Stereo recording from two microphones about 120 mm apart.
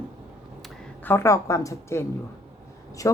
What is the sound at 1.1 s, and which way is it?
Speech, 25° left (ahead or behind).